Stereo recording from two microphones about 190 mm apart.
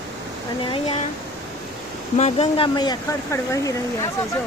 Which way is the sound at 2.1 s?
35° left (ahead or behind).